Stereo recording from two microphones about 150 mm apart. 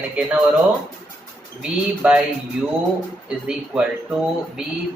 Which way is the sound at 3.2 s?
5° right (ahead or behind).